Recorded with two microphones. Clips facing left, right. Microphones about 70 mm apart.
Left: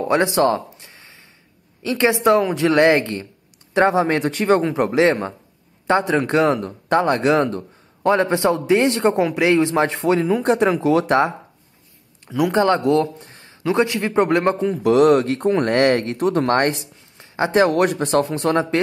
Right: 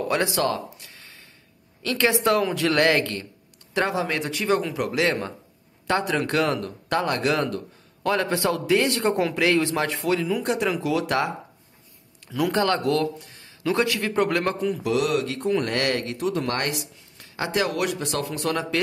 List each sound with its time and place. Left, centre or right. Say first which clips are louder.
0.0 s a sound: left 6 dB; left
1.8 s speech: left 4 dB; left
14.8 s speech: left 13 dB; left